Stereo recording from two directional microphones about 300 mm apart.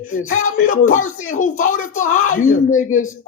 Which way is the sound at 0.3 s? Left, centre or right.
Left.